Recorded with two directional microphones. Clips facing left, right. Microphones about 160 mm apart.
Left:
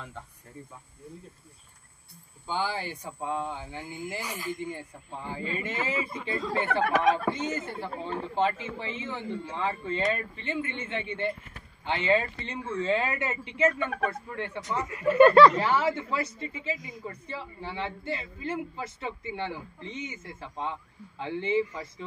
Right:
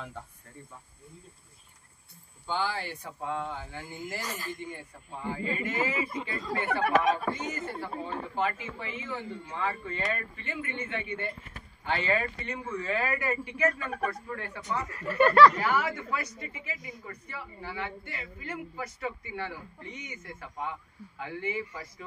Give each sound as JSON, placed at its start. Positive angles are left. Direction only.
{"t": 2.4, "sound": "speech", "side_deg": 15}
{"t": 5.1, "sound": "speech", "side_deg": 25}